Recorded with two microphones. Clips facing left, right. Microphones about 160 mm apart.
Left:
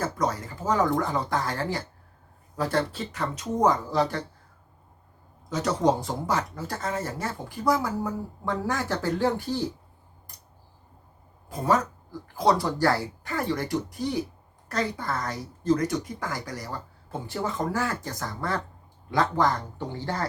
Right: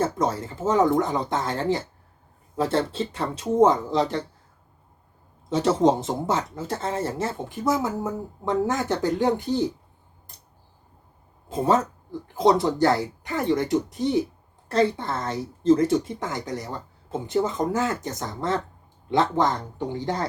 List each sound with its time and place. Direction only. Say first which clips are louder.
0.0 s speech: right 4 dB; 25° right (ahead or behind)
5.5 s speech: right 4 dB; 25° right (ahead or behind)
11.4 s speech: right 3 dB; 25° right (ahead or behind)